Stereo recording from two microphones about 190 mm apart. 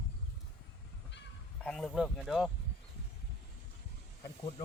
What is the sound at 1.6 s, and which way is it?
Speech, 5° left (ahead or behind).